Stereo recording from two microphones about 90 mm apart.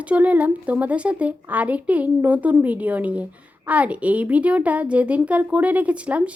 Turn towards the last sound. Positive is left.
turn(degrees=-15)  # may be behind; listen again after turning